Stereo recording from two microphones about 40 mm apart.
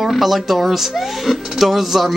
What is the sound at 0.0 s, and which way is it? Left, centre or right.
Speech, centre.